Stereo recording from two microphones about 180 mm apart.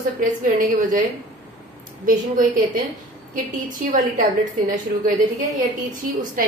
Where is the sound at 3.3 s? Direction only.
50° right (ahead or behind).